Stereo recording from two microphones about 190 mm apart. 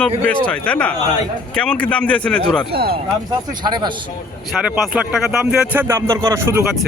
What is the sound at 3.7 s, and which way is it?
Speech, 20° right (ahead or behind).